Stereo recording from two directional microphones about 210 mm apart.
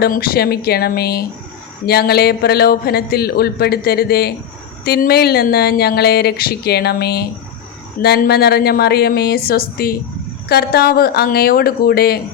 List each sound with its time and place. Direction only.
0.0 s speech: 45° left (ahead or behind)